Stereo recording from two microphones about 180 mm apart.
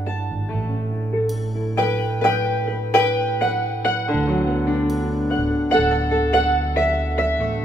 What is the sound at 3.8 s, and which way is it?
Music, 5° left (ahead or behind).